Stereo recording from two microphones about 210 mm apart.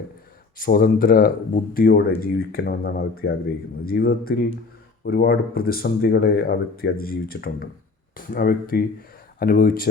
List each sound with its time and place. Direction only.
0.6 s speech: 45° left (ahead or behind)